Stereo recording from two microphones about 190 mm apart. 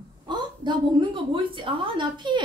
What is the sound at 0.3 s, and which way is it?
Speech, 25° right (ahead or behind).